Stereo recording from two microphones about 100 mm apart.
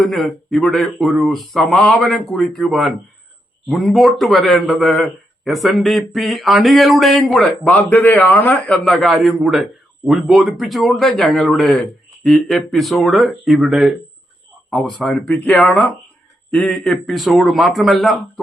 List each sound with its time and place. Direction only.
0.0 s speech: centre (ahead or behind)
7.7 s a man's voice: 20° left (ahead or behind)
8.8 s a man's voice: centre (ahead or behind)